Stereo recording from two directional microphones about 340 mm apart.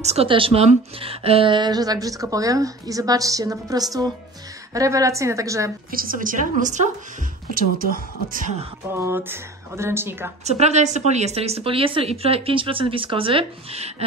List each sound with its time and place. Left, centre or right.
0.0 s a woman's voice: centre
5.9 s a woman's voice: right
8.9 s a woman's voice: centre
10.4 s a woman's voice: centre